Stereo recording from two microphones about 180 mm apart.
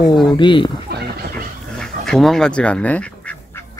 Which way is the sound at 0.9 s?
60° right (ahead or behind).